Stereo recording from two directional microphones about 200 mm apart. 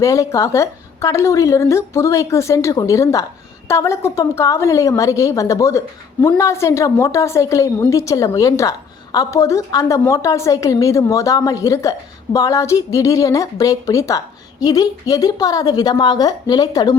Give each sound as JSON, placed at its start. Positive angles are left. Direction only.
{"t": 0.0, "sound": "a woman's voice", "side_deg": 15}